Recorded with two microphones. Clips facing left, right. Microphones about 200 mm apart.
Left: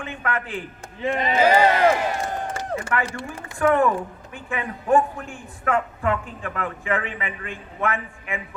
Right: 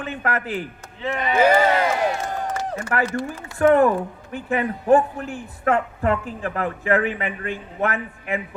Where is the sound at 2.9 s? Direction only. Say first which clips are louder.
Right 7 dB; 40° right (ahead or behind).